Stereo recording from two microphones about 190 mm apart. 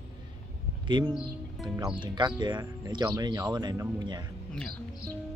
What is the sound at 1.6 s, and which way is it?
Speech, 20° right (ahead or behind).